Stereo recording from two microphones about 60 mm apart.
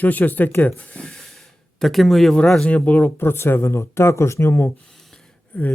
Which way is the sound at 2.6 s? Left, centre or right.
Left.